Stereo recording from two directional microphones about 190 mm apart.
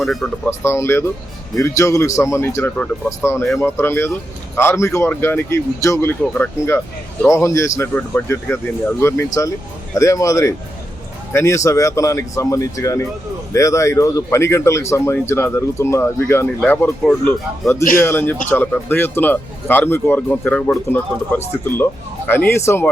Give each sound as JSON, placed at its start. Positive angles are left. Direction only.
{"t": 0.0, "sound": "speech", "side_deg": 0}
{"t": 0.6, "sound": "speech", "side_deg": 15}